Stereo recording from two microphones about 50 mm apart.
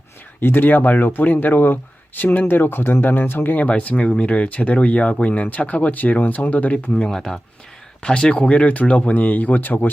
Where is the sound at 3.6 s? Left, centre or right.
Left.